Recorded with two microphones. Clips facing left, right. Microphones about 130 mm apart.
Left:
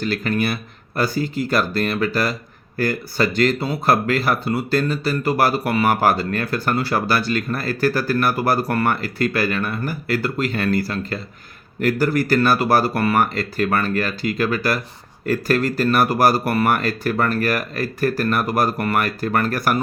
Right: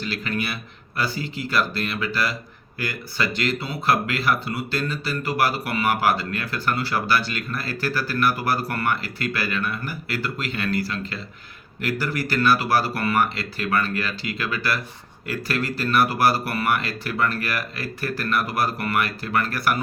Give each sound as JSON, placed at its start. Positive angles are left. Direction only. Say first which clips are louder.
{"t": 0.0, "sound": "speech", "louder": "left 6 dB", "side_deg": 45}